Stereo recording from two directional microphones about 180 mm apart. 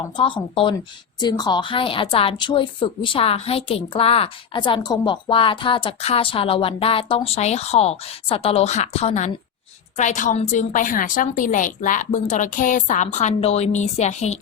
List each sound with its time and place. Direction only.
0.2 s a woman's voice: 30° left (ahead or behind)